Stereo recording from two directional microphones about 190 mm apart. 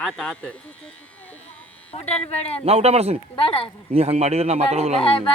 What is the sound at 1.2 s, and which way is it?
Electric shaver, 10° left (ahead or behind).